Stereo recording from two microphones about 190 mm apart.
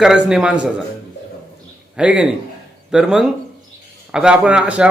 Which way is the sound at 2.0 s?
5° right (ahead or behind).